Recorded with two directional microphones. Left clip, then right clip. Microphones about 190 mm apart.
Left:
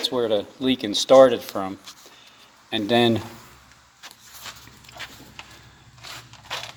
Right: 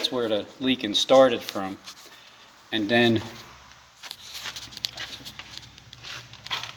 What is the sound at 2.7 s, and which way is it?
Speech, 45° left (ahead or behind).